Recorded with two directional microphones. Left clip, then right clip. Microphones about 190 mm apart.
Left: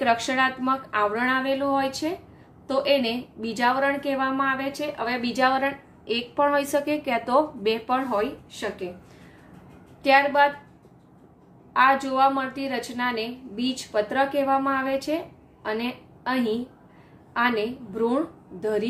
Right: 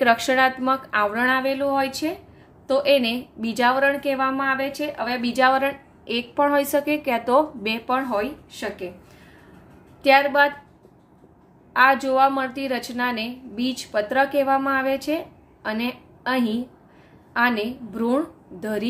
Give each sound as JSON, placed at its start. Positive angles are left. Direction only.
{"t": 0.0, "sound": "a woman's voice", "side_deg": -30}
{"t": 10.0, "sound": "a woman's voice", "side_deg": -25}
{"t": 11.7, "sound": "a woman's voice", "side_deg": -25}